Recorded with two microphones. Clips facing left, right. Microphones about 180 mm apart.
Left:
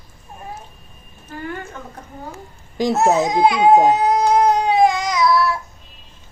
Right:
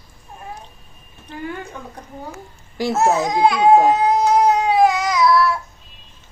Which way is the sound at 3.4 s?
Centre (ahead or behind).